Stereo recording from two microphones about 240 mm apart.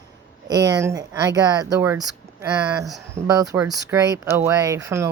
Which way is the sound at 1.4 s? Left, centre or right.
Centre.